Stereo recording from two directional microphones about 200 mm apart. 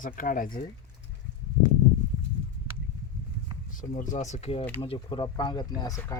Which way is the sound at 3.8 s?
40° left (ahead or behind).